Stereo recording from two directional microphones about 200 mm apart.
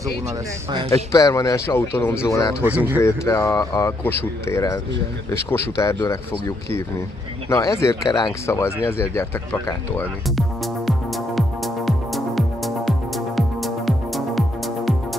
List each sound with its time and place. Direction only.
0.8 s a man's voice: 15° left (ahead or behind)
2.6 s speech: 10° right (ahead or behind)
3.0 s a man's voice: 15° left (ahead or behind)
10.2 s music: centre (ahead or behind)